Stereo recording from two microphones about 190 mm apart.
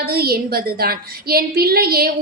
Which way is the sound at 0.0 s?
55° right (ahead or behind).